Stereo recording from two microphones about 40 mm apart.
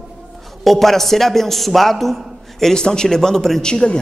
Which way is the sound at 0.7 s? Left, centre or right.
Centre.